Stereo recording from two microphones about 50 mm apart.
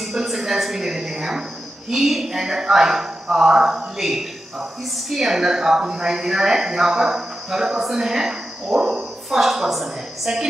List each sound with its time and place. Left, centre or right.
0.0 s a woman's voice: centre